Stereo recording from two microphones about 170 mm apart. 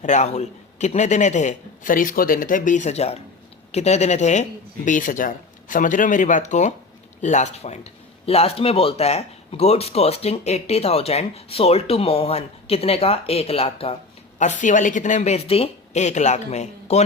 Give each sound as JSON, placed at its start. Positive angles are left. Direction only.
{"t": 0.0, "sound": "a man's voice", "side_deg": 45}